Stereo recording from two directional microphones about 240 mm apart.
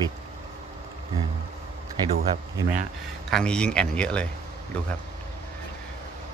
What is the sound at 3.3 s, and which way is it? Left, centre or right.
Speech, centre.